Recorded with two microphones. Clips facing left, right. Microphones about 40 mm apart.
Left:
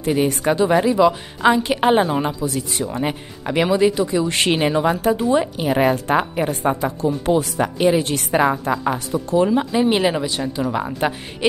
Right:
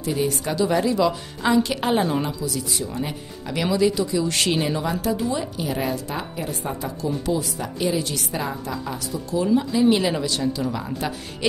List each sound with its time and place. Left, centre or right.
0.0 s speech: left